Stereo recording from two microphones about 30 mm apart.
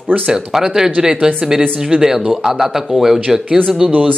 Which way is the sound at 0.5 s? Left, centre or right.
Centre.